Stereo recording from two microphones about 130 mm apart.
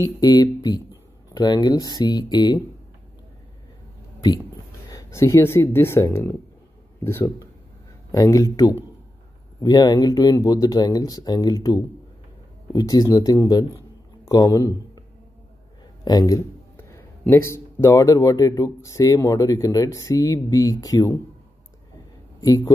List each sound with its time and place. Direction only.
0.0 s speech: 30° left (ahead or behind)
4.8 s speech: 25° left (ahead or behind)
9.6 s a man's voice: 30° left (ahead or behind)
16.0 s a man's voice: 30° left (ahead or behind)